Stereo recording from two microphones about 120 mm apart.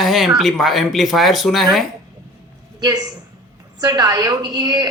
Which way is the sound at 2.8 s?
35° right (ahead or behind).